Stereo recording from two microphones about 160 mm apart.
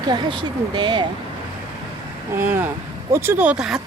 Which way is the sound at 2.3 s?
15° right (ahead or behind).